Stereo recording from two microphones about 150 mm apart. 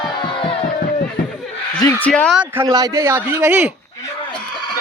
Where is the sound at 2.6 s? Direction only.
25° right (ahead or behind).